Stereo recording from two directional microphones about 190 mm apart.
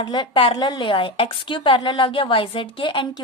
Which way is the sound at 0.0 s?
25° left (ahead or behind).